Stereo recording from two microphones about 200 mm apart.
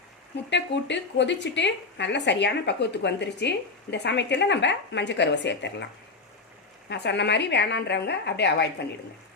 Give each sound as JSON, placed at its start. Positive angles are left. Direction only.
{"t": 0.5, "sound": "a woman's voice", "side_deg": 60}